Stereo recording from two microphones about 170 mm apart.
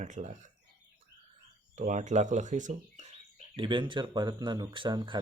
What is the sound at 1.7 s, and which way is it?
Speech, 45° right (ahead or behind).